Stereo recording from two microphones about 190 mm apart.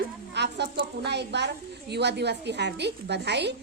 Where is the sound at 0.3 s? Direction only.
65° right (ahead or behind).